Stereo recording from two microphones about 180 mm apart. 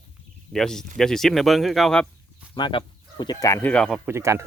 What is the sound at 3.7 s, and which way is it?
Speech, centre (ahead or behind).